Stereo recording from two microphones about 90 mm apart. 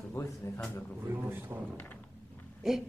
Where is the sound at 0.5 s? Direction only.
35° left (ahead or behind).